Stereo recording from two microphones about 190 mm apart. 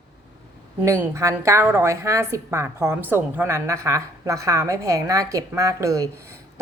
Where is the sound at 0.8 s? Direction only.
15° right (ahead or behind).